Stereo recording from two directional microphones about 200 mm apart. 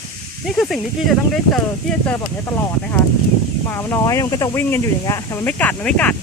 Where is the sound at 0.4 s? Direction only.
Centre (ahead or behind).